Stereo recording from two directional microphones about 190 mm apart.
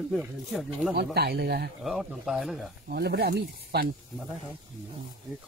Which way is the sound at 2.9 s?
55° right (ahead or behind).